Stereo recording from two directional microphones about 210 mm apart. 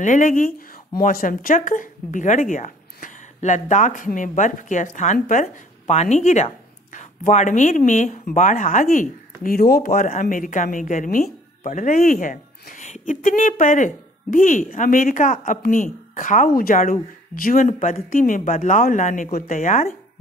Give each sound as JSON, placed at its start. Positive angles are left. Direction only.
{"t": 0.0, "sound": "a woman's voice", "side_deg": 40}